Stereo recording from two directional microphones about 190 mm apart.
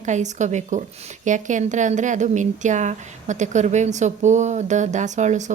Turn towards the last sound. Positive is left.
turn(degrees=-40)  # may be behind; listen again after turning